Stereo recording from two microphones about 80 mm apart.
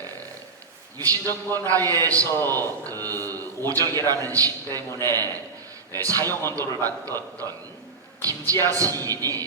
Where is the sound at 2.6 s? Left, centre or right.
Right.